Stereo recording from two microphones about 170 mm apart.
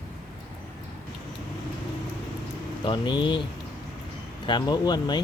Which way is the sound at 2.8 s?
25° left (ahead or behind).